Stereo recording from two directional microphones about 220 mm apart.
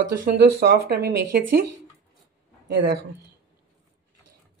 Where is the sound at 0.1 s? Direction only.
40° right (ahead or behind).